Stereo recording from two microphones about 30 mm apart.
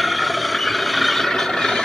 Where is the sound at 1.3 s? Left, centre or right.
Centre.